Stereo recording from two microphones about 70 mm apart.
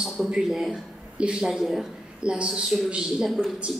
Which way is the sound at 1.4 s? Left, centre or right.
Centre.